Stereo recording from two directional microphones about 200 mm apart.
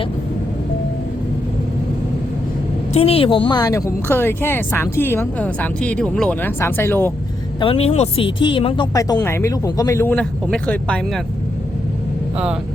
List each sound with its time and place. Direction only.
2.9 s speech: 30° left (ahead or behind); by 7.1 s 10° left (ahead or behind)
7.6 s speech: 30° left (ahead or behind); by 11.2 s 5° left (ahead or behind)